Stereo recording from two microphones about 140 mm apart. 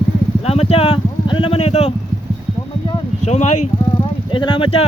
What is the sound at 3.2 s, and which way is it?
Speech, 55° left (ahead or behind).